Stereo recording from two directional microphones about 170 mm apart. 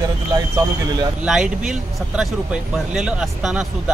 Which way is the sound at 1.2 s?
5° right (ahead or behind).